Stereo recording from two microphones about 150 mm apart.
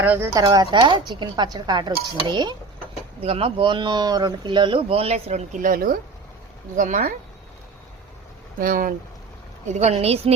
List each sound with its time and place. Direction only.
0.0 s speech: 15° right (ahead or behind); by 2.6 s 30° right (ahead or behind)
3.2 s speech: 40° right (ahead or behind)
5.6 s speech: 70° right (ahead or behind)
8.5 s speech: 65° right (ahead or behind)
9.6 s a woman's voice: 50° right (ahead or behind)